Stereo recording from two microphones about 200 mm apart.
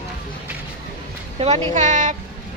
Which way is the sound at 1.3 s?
30° right (ahead or behind).